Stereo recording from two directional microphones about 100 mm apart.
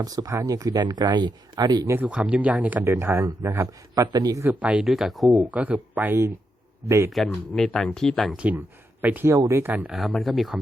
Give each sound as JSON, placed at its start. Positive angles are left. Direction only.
{"t": 0.0, "sound": "speech", "side_deg": -40}
{"t": 1.9, "sound": "speech", "side_deg": -15}
{"t": 2.9, "sound": "speech", "side_deg": -25}
{"t": 3.9, "sound": "speech", "side_deg": -40}
{"t": 4.4, "sound": "speech", "side_deg": -15}
{"t": 4.9, "sound": "speech", "side_deg": 0}
{"t": 5.5, "sound": "speech", "side_deg": -15}
{"t": 6.8, "sound": "speech", "side_deg": -30}
{"t": 7.1, "sound": "speech", "side_deg": 5}
{"t": 8.4, "sound": "speech", "side_deg": -15}
{"t": 9.9, "sound": "speech", "side_deg": 0}